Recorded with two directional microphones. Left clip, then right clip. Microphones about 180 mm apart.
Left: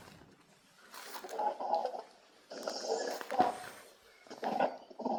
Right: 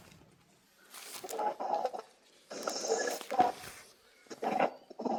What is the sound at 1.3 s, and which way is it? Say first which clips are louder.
Chicken: even; 25° right (ahead or behind).